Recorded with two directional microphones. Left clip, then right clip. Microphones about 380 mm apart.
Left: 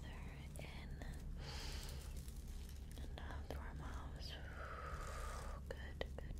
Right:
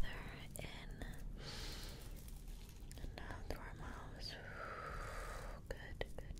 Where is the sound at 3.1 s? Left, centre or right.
Centre.